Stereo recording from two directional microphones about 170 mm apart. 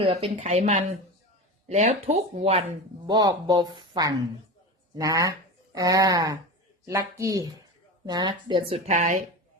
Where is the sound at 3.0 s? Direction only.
25° right (ahead or behind).